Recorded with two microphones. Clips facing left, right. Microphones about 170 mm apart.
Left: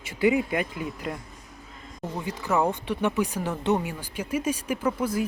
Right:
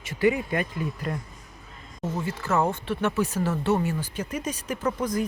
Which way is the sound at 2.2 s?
15° left (ahead or behind).